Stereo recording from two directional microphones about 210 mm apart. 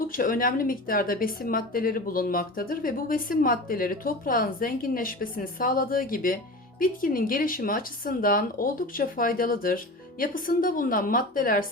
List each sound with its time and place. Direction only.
0.1 s a woman's voice: 40° left (ahead or behind)